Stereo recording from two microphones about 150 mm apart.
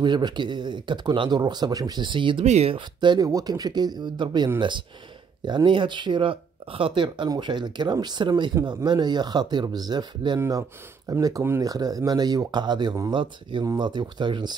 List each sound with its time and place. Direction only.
0.0 s speech: 30° right (ahead or behind)
2.4 s speech: 45° right (ahead or behind); by 14.6 s 30° right (ahead or behind)